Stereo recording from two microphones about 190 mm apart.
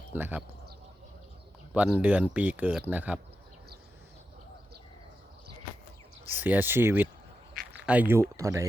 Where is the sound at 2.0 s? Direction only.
10° right (ahead or behind).